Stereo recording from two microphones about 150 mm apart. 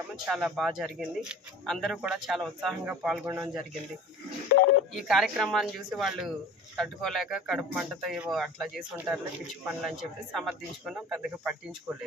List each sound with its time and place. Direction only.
0.3 s speech: centre (ahead or behind)
3.2 s speech: 20° right (ahead or behind)
4.9 s speech: centre (ahead or behind)